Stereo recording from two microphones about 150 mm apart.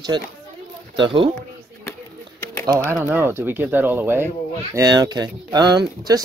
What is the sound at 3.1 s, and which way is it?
Speech, 15° right (ahead or behind).